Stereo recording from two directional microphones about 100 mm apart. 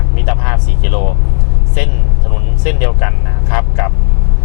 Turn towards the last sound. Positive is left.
turn(degrees=15)  # may be behind; listen again after turning